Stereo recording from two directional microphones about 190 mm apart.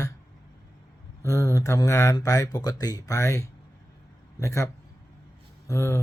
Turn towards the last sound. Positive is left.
turn(degrees=15)  # may be behind; listen again after turning